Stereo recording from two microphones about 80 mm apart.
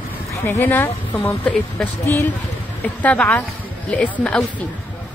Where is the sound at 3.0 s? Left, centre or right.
Centre.